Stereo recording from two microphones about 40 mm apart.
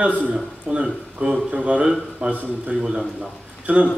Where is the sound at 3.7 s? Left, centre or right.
Right.